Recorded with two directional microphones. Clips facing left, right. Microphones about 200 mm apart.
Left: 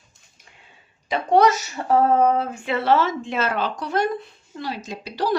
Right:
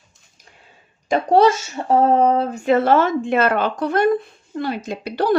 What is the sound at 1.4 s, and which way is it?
A woman's voice, 25° right (ahead or behind).